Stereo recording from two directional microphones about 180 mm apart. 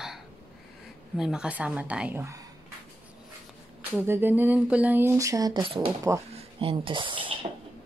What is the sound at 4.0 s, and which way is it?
Speech, 10° right (ahead or behind).